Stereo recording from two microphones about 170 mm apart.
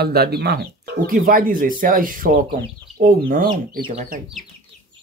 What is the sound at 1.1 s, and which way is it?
Speech, 55° right (ahead or behind).